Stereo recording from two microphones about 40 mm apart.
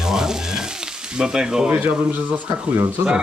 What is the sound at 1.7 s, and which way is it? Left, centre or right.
Speech, right.